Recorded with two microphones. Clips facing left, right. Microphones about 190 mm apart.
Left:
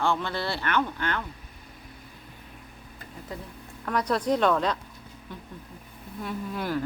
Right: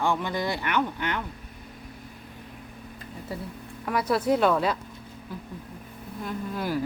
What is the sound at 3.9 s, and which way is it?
Speech, 5° right (ahead or behind).